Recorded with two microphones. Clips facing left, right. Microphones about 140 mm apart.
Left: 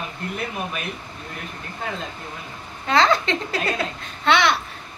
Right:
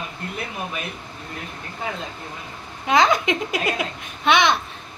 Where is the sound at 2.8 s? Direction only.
15° right (ahead or behind).